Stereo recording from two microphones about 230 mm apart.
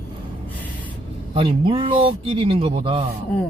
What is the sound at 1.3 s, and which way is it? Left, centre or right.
Speech, right.